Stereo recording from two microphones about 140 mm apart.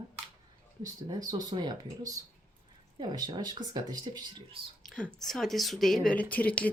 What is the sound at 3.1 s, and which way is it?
Speech, 30° right (ahead or behind).